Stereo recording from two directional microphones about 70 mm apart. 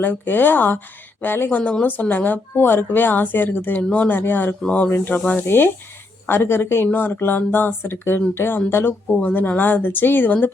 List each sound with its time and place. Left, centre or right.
0.0 s speech: left
9.2 s speech: left